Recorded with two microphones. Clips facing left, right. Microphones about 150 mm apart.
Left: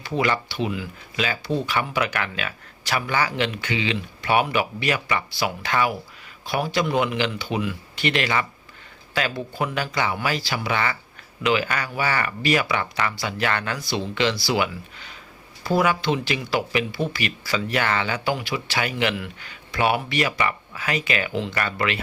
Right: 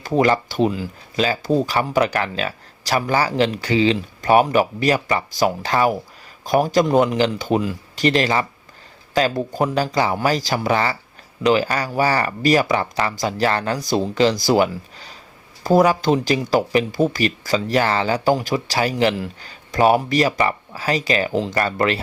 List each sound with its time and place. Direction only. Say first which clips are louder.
0.0 s speech: right 6 dB; 40° right (ahead or behind)